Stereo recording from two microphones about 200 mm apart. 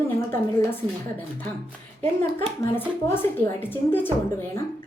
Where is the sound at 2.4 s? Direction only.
10° left (ahead or behind).